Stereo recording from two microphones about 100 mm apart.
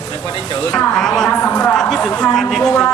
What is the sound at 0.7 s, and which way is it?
Speech, 5° left (ahead or behind).